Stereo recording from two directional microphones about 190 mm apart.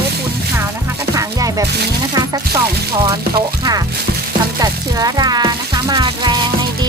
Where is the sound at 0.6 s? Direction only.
15° right (ahead or behind).